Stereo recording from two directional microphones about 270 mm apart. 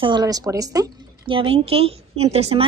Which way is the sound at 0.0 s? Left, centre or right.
Centre.